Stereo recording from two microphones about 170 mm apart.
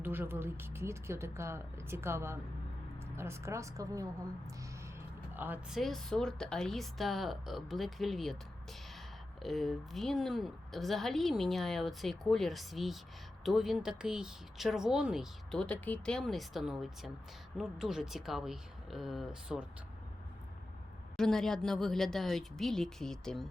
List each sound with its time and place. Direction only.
0.0 s speech: 10° right (ahead or behind)
5.4 s speech: 10° right (ahead or behind)
5.8 s speech: 5° left (ahead or behind)
9.4 s speech: centre (ahead or behind)
21.2 s speech: centre (ahead or behind)